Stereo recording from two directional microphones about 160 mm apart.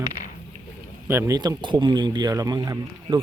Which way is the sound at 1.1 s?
15° right (ahead or behind).